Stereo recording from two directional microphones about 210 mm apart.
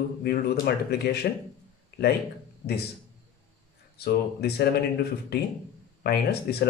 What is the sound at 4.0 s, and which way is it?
Speech, 50° left (ahead or behind).